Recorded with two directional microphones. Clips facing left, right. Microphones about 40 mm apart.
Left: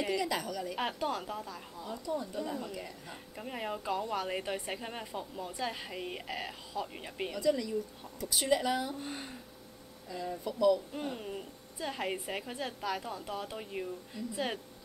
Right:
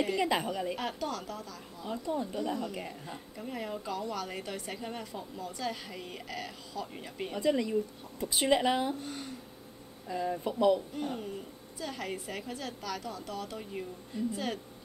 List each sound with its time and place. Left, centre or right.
0.1 s speech: right
0.7 s a woman's voice: left
1.9 s speech: right
3.3 s a woman's voice: centre
7.3 s speech: right
9.0 s a woman's voice: left
10.0 s speech: right
11.0 s speech: centre
11.8 s a woman's voice: left